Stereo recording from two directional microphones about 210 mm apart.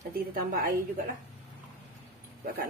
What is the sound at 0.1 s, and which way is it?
Speech, 45° right (ahead or behind).